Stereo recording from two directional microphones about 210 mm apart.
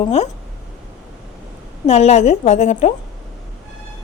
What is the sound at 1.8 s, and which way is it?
A woman's voice, 30° left (ahead or behind).